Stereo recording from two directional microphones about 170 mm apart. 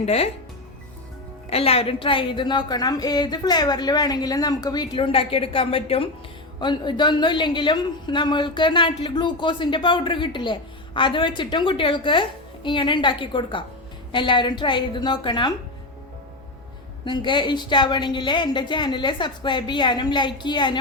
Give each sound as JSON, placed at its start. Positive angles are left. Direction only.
{"t": 0.0, "sound": "speech", "side_deg": 35}
{"t": 1.5, "sound": "a woman's voice", "side_deg": 35}
{"t": 17.1, "sound": "a woman's voice", "side_deg": 25}